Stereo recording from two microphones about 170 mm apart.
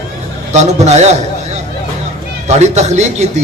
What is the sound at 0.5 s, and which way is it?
Speech, 40° right (ahead or behind).